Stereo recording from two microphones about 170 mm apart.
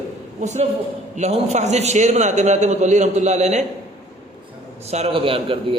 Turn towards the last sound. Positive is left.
turn(degrees=-30)  # may be behind; listen again after turning